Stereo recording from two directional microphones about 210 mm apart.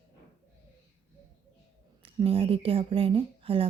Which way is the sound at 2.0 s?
25° right (ahead or behind).